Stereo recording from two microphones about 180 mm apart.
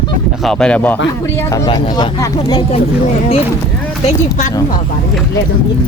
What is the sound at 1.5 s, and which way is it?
Speech, 25° left (ahead or behind).